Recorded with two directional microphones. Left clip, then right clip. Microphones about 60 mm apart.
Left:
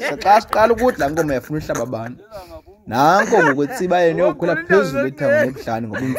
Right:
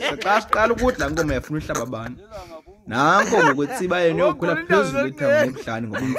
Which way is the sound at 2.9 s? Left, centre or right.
Left.